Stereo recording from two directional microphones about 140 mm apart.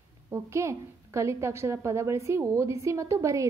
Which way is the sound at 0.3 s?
20° right (ahead or behind).